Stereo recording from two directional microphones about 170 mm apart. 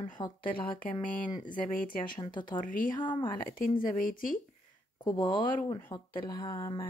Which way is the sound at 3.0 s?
25° left (ahead or behind).